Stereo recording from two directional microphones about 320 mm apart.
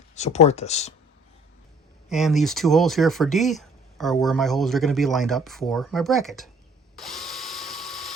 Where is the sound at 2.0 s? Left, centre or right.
Centre.